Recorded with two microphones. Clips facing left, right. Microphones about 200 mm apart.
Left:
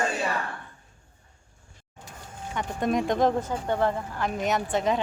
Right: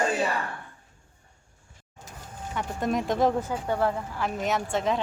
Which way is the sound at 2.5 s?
5° right (ahead or behind).